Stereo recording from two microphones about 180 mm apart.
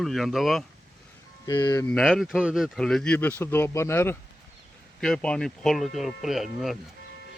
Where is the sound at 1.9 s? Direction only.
Centre (ahead or behind).